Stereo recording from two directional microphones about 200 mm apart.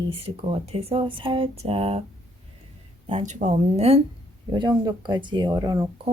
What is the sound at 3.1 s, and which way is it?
Speech, 35° right (ahead or behind).